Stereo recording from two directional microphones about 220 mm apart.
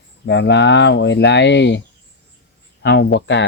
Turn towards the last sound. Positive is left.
turn(degrees=55)  # may be behind; listen again after turning